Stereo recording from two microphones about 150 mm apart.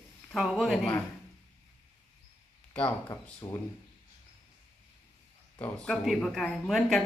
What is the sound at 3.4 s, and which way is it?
Speech, 30° left (ahead or behind).